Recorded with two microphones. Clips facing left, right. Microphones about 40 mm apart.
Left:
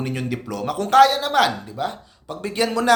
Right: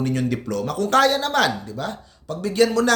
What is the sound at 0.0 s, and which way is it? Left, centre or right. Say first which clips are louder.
Speech: right 3 dB; centre.